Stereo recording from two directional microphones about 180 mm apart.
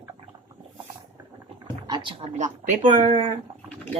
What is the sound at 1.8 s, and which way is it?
Speech, 25° right (ahead or behind).